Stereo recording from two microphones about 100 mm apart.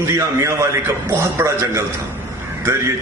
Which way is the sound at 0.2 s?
30° right (ahead or behind).